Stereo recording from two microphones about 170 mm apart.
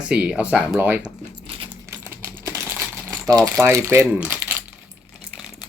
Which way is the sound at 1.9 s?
15° right (ahead or behind).